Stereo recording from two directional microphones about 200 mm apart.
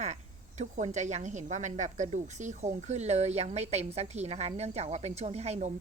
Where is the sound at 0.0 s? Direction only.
35° right (ahead or behind).